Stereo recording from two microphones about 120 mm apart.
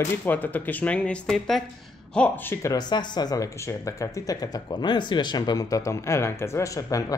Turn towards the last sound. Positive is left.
turn(degrees=30)  # may be behind; listen again after turning